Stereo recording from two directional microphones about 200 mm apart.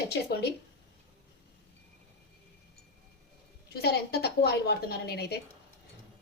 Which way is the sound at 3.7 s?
55° left (ahead or behind).